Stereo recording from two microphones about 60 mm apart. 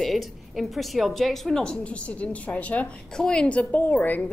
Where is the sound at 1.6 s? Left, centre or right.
Centre.